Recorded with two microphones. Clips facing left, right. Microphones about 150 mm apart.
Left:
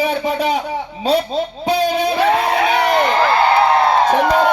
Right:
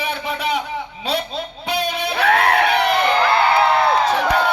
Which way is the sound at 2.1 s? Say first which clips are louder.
Left 1 dB; 65° right (ahead or behind).